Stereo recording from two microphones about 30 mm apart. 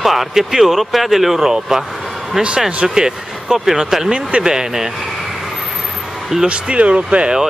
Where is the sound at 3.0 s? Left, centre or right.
Right.